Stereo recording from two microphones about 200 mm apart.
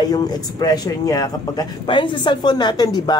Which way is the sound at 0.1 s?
20° left (ahead or behind).